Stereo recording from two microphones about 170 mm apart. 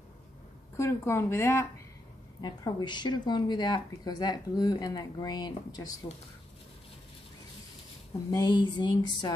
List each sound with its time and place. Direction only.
0.7 s speech: 15° left (ahead or behind)
2.4 s speech: 25° left (ahead or behind)
8.3 s speech: 25° left (ahead or behind)